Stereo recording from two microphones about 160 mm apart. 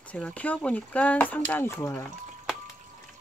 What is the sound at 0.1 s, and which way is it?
Speech, 10° left (ahead or behind).